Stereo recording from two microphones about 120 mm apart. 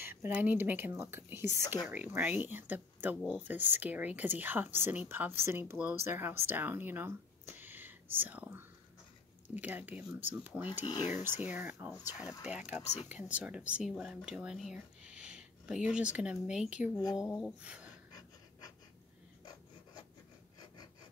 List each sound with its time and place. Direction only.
0.0 s speech: 20° right (ahead or behind)
19.4 s filing: 35° left (ahead or behind)